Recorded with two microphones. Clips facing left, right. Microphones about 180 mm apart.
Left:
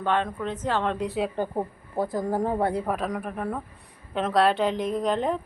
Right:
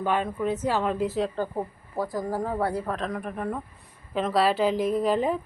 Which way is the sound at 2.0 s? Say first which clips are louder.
Left 2 dB; 25° left (ahead or behind).